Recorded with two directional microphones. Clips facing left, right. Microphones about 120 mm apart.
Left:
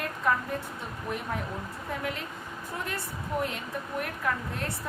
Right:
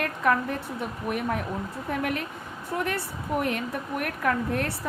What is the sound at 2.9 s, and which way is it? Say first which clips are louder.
A woman's voice: right 5 dB; 60° right (ahead or behind).